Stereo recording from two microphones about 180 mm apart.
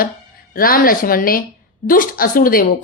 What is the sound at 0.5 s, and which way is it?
A woman's voice, 55° left (ahead or behind).